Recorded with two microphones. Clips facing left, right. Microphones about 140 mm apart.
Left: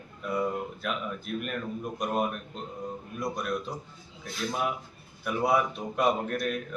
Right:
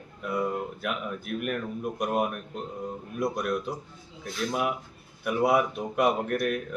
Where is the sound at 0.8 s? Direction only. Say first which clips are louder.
Right 1 dB; 10° right (ahead or behind).